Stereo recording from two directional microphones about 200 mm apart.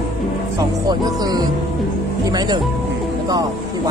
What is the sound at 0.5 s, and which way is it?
Speech, 20° right (ahead or behind).